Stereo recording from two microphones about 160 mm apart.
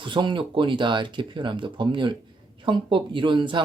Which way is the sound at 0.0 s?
30° right (ahead or behind).